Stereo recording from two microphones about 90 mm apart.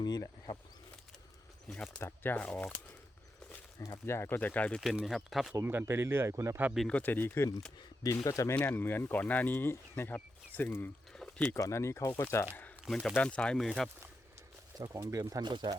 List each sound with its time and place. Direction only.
0.0 s insect: 50° left (ahead or behind)
2.0 s speech: 25° left (ahead or behind)
3.8 s speech: 35° left (ahead or behind)
4.4 s speech: 20° left (ahead or behind)
4.8 s speech: 5° right (ahead or behind)
5.5 s speech: 25° right (ahead or behind)
6.8 s speech: 20° left (ahead or behind)
8.0 s speech: 40° left (ahead or behind)
8.5 s speech: 20° left (ahead or behind)
11.1 s a sound: 5° left (ahead or behind)
11.5 s speech: 30° left (ahead or behind)
13.2 s speech: 10° left (ahead or behind)
14.8 s speech: 40° right (ahead or behind)
15.4 s speech: 60° right (ahead or behind)